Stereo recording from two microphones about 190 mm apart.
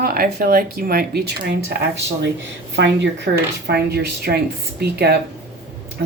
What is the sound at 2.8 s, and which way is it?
A woman's voice, 70° right (ahead or behind).